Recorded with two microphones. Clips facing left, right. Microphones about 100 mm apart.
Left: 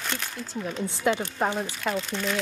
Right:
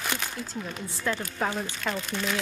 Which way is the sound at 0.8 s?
20° left (ahead or behind).